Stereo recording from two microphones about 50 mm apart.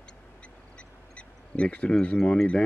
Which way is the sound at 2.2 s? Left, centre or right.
Centre.